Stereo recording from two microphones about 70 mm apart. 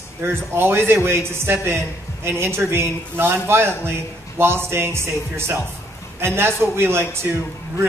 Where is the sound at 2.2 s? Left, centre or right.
Right.